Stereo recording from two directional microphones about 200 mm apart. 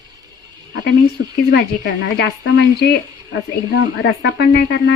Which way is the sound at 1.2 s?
50° left (ahead or behind).